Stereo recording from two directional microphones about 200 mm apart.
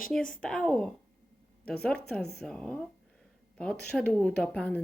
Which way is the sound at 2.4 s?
5° left (ahead or behind).